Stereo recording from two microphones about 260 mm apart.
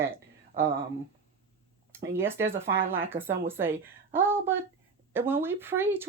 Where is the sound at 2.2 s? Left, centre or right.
Centre.